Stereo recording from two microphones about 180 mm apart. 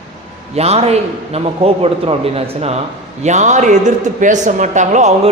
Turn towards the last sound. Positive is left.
turn(degrees=-40)  # may be behind; listen again after turning